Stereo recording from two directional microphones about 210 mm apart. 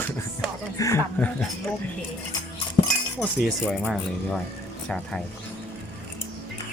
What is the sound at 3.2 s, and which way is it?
Speech, centre (ahead or behind).